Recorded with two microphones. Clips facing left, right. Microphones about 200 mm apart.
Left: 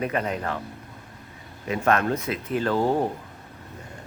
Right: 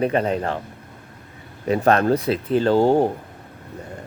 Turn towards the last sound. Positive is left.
turn(degrees=-30)  # may be behind; listen again after turning